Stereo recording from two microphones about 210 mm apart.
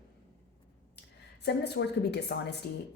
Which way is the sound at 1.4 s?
50° left (ahead or behind).